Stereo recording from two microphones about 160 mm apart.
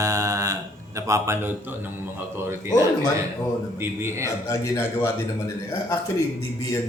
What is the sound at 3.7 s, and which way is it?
Speech, 15° right (ahead or behind).